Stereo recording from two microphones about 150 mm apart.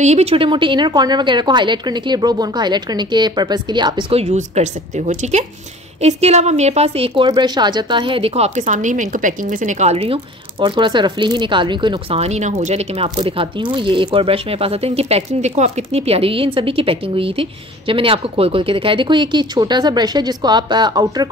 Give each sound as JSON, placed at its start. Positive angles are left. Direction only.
{"t": 0.0, "sound": "a woman's voice", "side_deg": -45}
{"t": 4.2, "sound": "a woman's voice", "side_deg": -50}
{"t": 7.2, "sound": "speech", "side_deg": -30}
{"t": 12.2, "sound": "speech", "side_deg": -50}